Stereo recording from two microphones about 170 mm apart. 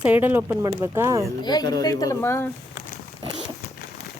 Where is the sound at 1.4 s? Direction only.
25° left (ahead or behind).